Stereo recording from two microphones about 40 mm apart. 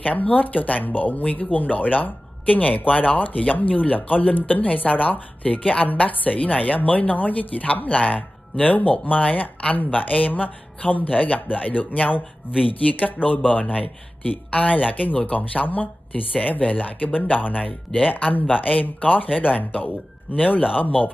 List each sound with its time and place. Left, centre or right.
0.0 s speech: left
5.4 s speech: left